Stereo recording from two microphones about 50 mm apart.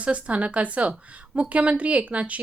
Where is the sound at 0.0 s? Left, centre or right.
Right.